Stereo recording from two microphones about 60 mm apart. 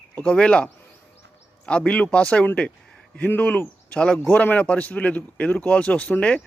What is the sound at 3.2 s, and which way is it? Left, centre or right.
Speech, left.